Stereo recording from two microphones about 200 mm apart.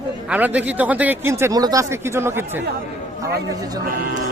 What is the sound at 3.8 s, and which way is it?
Speech, 45° right (ahead or behind).